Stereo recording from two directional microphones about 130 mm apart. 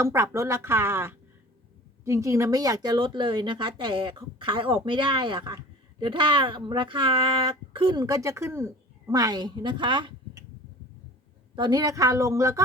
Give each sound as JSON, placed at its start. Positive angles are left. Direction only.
{"t": 0.0, "sound": "a woman's voice", "side_deg": -20}
{"t": 11.5, "sound": "a woman's voice", "side_deg": -35}